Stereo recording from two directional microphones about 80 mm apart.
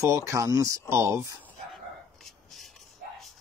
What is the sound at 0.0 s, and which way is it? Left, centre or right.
Speech, right.